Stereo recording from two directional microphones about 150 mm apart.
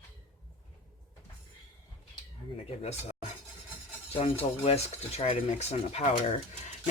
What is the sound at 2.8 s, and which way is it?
Speech, 45° left (ahead or behind).